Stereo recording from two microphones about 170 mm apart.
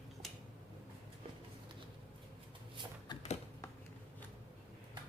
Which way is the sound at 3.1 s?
25° left (ahead or behind).